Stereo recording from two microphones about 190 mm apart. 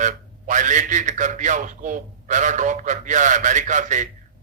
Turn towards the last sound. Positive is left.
turn(degrees=-40)  # may be behind; listen again after turning